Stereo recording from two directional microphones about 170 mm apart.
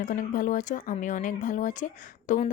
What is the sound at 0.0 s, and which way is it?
A woman's voice, 50° left (ahead or behind).